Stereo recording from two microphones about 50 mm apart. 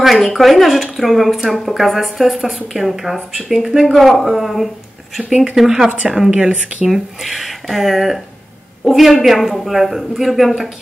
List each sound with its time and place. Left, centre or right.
0.0 s speech: centre
6.3 s speech: right
6.9 s speech: centre